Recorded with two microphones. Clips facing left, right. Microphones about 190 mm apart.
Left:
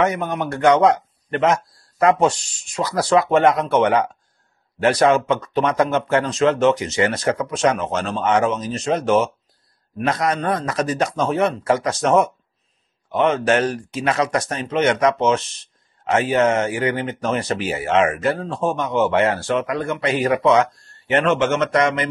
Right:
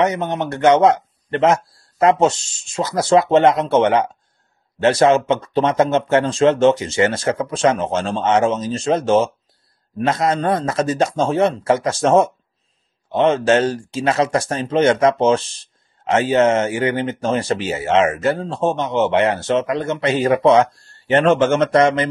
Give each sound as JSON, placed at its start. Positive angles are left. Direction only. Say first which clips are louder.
{"t": 0.0, "sound": "speech", "louder": "right 2 dB", "side_deg": -20}